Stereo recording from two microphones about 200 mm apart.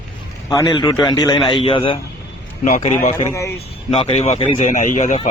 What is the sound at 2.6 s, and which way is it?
Speech, 40° left (ahead or behind).